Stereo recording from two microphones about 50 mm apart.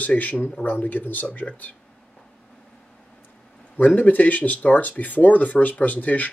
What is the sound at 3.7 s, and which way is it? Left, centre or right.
Speech, left.